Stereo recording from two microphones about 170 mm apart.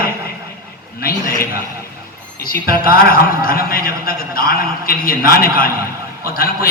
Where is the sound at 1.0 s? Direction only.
60° left (ahead or behind).